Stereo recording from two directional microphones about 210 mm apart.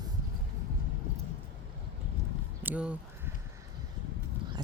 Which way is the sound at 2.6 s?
5° right (ahead or behind).